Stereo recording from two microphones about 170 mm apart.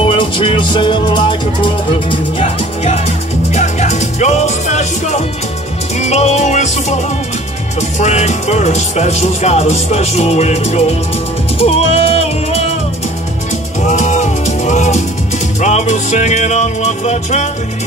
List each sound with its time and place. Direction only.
0.0 s music: 30° left (ahead or behind)
8.0 s speech: 45° left (ahead or behind)
11.6 s music: 35° left (ahead or behind)
13.8 s music: 45° left (ahead or behind)